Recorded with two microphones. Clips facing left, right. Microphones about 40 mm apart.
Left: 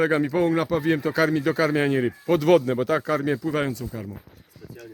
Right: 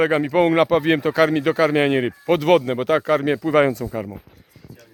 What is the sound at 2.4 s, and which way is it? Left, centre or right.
Speech, right.